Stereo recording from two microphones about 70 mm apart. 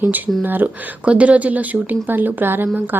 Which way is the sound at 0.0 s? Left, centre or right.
Right.